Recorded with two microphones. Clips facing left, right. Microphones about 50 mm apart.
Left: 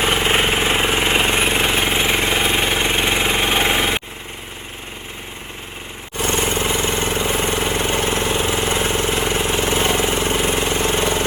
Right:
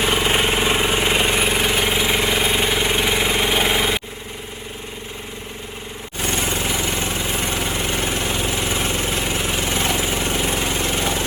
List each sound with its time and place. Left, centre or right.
0.0 s jackhammer: left
2.2 s vehicle: left
3.2 s engine: left
6.1 s vehicle: left